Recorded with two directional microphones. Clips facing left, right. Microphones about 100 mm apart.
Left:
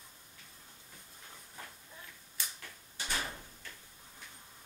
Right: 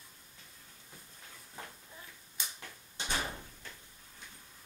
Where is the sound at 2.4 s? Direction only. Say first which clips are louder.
Even; 20° right (ahead or behind).